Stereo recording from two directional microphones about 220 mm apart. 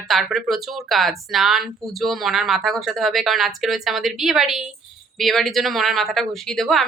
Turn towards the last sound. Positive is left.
turn(degrees=0)  # may be behind; listen again after turning